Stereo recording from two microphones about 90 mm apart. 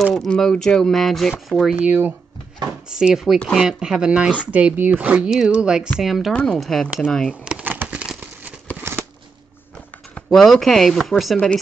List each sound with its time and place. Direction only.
0.0 s speech: centre (ahead or behind)
1.8 s speech: 15° right (ahead or behind)
2.9 s speech: 5° right (ahead or behind)
7.4 s a sound: 15° right (ahead or behind)
8.9 s a sound: 30° right (ahead or behind)
10.3 s speech: 5° left (ahead or behind)